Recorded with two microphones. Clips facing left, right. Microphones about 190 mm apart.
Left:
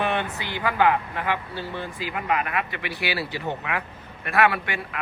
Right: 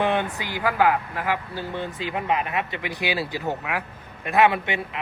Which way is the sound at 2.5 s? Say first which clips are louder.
Right 1 dB; 20° right (ahead or behind).